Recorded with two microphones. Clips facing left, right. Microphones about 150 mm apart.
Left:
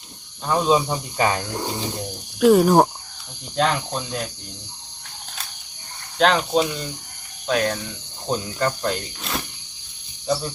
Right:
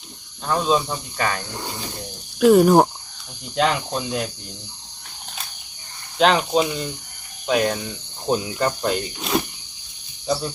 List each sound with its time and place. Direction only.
0.4 s speech: 5° left (ahead or behind)
2.4 s speech: centre (ahead or behind)
6.1 s speech: 5° right (ahead or behind)
7.4 s cricket: 10° right (ahead or behind)
8.3 s speech: 10° right (ahead or behind)